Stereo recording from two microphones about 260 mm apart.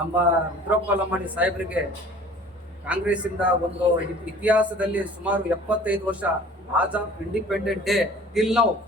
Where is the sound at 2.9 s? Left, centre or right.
Centre.